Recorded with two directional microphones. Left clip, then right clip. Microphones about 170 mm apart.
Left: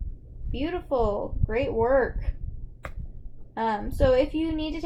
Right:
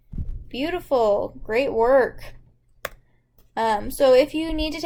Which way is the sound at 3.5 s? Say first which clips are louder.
Right 5 dB; 15° right (ahead or behind).